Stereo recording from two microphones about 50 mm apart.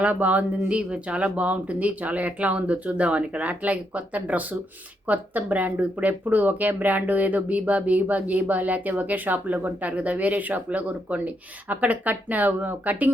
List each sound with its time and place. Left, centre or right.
0.0 s speech: right
0.8 s speech: right